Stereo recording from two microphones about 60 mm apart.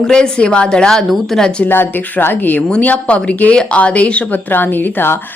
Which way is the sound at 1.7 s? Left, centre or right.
Left.